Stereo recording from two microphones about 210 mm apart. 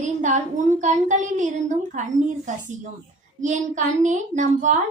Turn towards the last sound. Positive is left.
turn(degrees=-35)  # may be behind; listen again after turning